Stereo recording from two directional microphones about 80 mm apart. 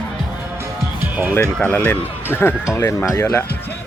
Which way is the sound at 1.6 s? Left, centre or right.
Centre.